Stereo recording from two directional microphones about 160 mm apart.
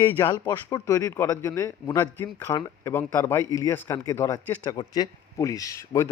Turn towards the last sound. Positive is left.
turn(degrees=20)  # may be behind; listen again after turning